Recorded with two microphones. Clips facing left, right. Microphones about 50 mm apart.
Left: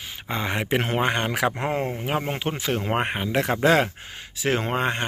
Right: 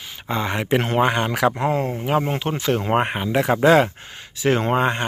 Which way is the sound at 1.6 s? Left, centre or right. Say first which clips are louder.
Right 4 dB; left.